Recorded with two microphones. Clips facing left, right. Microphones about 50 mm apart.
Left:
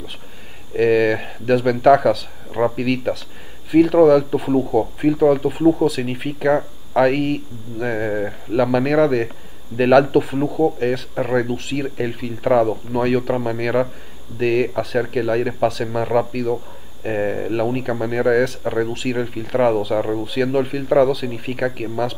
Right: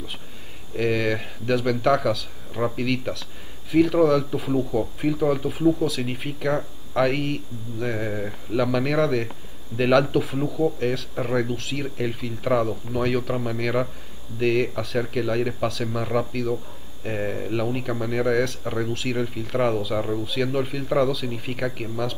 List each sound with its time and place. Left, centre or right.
0.7 s speech: centre
4.5 s speech: left
4.7 s speech: centre
10.4 s speech: left
10.8 s speech: centre
20.0 s speech: left
20.2 s speech: centre